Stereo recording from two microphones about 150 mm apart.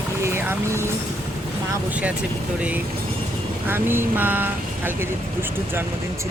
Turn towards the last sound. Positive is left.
turn(degrees=-15)  # may be behind; listen again after turning